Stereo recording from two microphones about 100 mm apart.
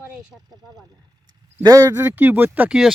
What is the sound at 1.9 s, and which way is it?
Speech, 20° right (ahead or behind).